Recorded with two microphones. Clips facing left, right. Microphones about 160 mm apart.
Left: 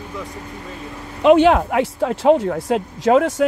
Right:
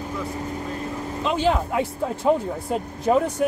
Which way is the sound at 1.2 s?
70° left (ahead or behind).